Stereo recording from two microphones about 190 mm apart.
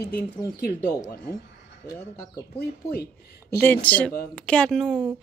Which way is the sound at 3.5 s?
10° left (ahead or behind).